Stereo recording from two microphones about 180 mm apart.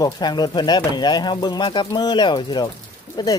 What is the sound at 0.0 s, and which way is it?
Speech, 25° left (ahead or behind).